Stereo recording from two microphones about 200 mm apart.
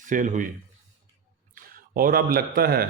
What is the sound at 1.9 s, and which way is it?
Speech, 45° right (ahead or behind).